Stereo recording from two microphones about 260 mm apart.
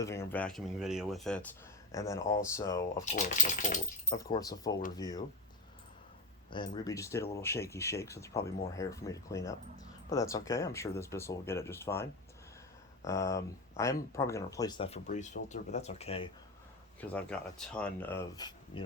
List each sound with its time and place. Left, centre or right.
0.0 s speech: centre
3.0 s speech: left
4.1 s speech: centre
6.5 s speech: centre
13.1 s speech: centre
17.0 s speech: centre